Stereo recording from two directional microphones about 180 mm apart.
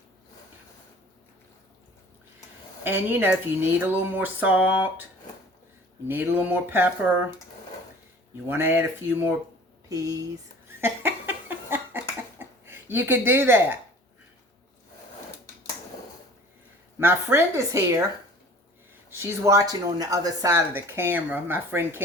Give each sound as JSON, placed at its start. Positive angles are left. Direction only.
{"t": 2.8, "sound": "speech", "side_deg": -10}
{"t": 6.1, "sound": "speech", "side_deg": -10}
{"t": 8.4, "sound": "speech", "side_deg": -10}
{"t": 10.8, "sound": "laughter", "side_deg": -15}
{"t": 12.4, "sound": "speech", "side_deg": -10}
{"t": 17.0, "sound": "speech", "side_deg": -15}
{"t": 19.1, "sound": "speech", "side_deg": -15}